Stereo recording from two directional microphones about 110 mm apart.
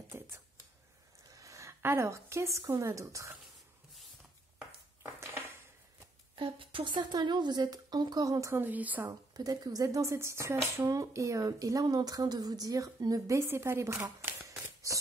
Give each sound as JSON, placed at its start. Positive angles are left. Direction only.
{"t": 1.3, "sound": "speech", "side_deg": -30}
{"t": 5.0, "sound": "a sound", "side_deg": -25}
{"t": 6.3, "sound": "speech", "side_deg": -50}
{"t": 9.0, "sound": "speech", "side_deg": -35}